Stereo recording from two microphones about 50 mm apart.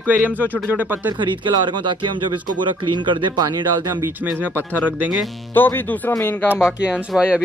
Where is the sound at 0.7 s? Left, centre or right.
Right.